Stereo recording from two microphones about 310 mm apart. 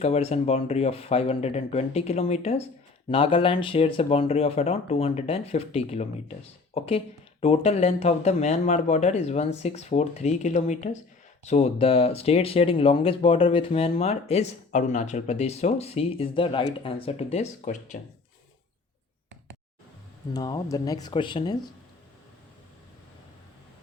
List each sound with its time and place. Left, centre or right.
0.0 s speech: centre
20.3 s speech: centre